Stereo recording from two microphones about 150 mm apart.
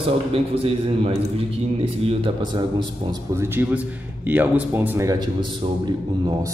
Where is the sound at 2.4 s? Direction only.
30° right (ahead or behind).